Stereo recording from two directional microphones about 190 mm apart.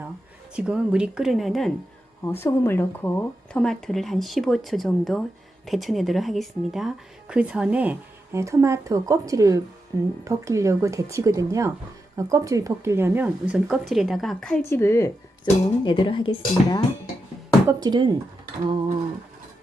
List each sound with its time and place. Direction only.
0.5 s speech: 5° right (ahead or behind)
2.2 s a woman's voice: 10° left (ahead or behind)
14.7 s a woman's voice: 15° left (ahead or behind)
15.8 s speech: 25° left (ahead or behind)
17.7 s speech: 20° right (ahead or behind)